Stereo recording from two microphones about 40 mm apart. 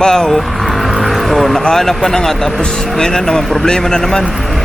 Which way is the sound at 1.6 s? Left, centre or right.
Centre.